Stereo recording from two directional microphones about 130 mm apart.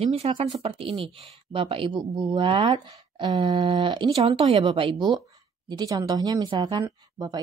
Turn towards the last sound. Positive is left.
turn(degrees=-30)  # may be behind; listen again after turning